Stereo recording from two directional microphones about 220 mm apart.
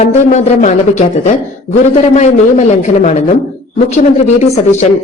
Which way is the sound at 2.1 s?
30° left (ahead or behind).